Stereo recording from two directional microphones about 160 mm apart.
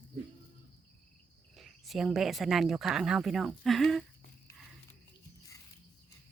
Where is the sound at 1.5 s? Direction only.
Centre (ahead or behind).